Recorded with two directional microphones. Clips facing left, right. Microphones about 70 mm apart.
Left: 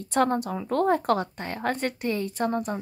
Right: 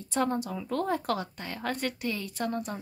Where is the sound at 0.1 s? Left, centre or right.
Left.